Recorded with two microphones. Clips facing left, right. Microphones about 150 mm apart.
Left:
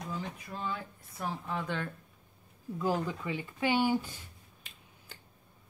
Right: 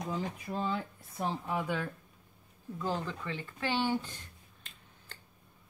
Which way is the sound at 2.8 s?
10° left (ahead or behind).